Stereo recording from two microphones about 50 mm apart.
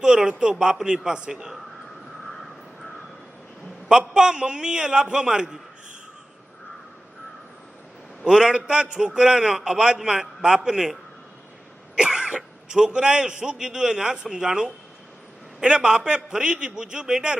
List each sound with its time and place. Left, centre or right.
0.0 s a man's voice: centre
3.8 s a man's voice: centre
8.2 s a man's voice: centre
11.9 s cough: centre
12.6 s a man's voice: centre